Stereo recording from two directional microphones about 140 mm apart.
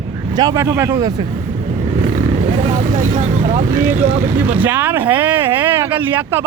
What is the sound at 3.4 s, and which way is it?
Speech, 55° right (ahead or behind).